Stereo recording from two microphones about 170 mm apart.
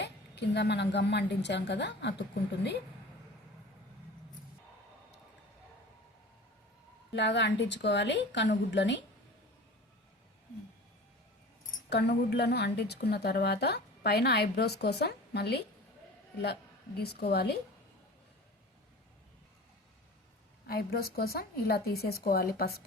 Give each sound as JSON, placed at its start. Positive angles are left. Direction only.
{"t": 0.0, "sound": "a woman's voice", "side_deg": 90}
{"t": 7.1, "sound": "a woman's voice", "side_deg": 90}
{"t": 11.9, "sound": "a woman's voice", "side_deg": 75}
{"t": 17.0, "sound": "a woman's voice", "side_deg": 70}
{"t": 20.7, "sound": "a woman's voice", "side_deg": 65}